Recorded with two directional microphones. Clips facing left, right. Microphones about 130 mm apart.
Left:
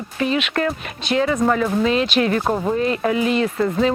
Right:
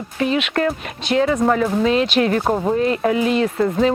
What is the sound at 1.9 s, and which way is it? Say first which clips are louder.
Speech: right 1 dB; 40° right (ahead or behind).